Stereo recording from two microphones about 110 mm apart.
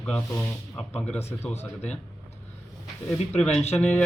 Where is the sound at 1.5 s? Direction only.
90° left.